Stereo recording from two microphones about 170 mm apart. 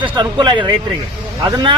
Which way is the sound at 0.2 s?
25° right (ahead or behind).